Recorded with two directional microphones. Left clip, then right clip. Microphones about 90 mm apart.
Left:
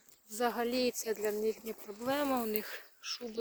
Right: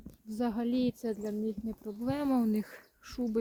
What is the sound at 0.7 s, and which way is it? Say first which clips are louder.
Speech: even; 15° left (ahead or behind).